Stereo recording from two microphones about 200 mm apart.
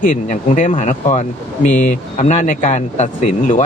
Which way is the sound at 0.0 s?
40° left (ahead or behind).